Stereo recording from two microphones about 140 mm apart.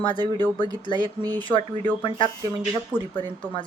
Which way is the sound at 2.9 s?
10° left (ahead or behind).